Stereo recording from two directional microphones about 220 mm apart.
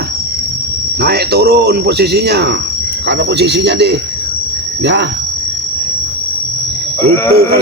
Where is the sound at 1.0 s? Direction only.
45° right (ahead or behind).